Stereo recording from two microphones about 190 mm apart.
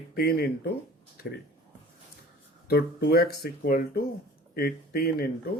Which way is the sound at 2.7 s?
55° left (ahead or behind).